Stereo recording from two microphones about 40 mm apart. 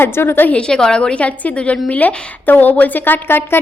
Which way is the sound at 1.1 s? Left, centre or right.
Left.